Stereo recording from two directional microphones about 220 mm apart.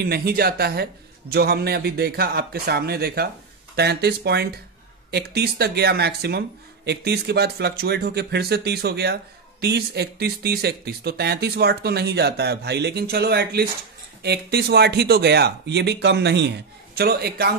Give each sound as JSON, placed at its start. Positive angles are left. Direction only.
{"t": 0.0, "sound": "speech", "side_deg": -45}